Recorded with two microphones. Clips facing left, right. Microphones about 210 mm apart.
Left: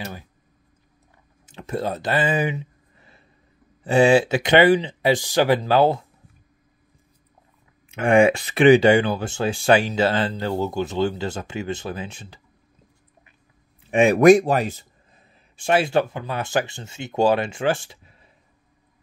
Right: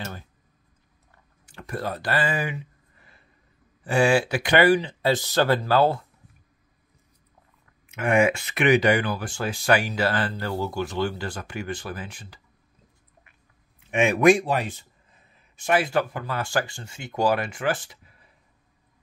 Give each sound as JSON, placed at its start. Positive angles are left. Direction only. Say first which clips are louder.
{"t": 1.4, "sound": "a sound", "louder": "left 5 dB", "side_deg": 20}
{"t": 3.8, "sound": "speech", "louder": "left 5 dB", "side_deg": 20}
{"t": 7.9, "sound": "speech", "louder": "left 5 dB", "side_deg": 30}
{"t": 13.8, "sound": "a man's voice", "louder": "left 5 dB", "side_deg": 35}